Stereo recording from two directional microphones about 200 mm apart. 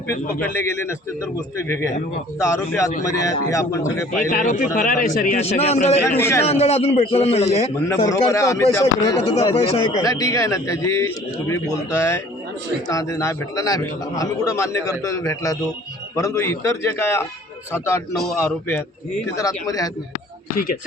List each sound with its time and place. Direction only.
0.1 s a man's voice: 15° left (ahead or behind)
4.3 s a man's voice: 40° left (ahead or behind)
6.1 s a man's voice: 10° left (ahead or behind)
6.4 s a man's voice: 30° left (ahead or behind)
8.0 s a man's voice: 15° left (ahead or behind)
9.2 s speech: 30° left (ahead or behind)
10.0 s a man's voice: 15° left (ahead or behind)
18.1 s a man's voice: centre (ahead or behind)
19.4 s a man's voice: 15° left (ahead or behind)